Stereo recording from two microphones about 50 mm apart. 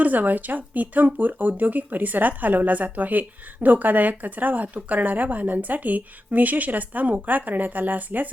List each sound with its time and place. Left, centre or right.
0.0 s speech: right